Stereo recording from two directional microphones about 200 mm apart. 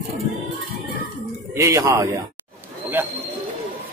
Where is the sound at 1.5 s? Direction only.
15° right (ahead or behind).